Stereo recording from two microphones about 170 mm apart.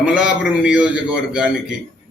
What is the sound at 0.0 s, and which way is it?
A man's voice, 5° right (ahead or behind).